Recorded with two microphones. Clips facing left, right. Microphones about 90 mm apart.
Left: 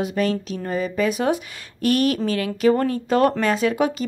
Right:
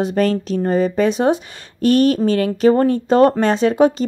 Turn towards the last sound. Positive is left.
turn(degrees=-30)  # may be behind; listen again after turning